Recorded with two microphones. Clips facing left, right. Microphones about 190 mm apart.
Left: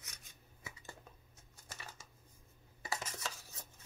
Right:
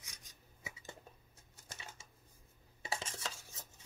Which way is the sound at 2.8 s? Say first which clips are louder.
Even; 25° right (ahead or behind).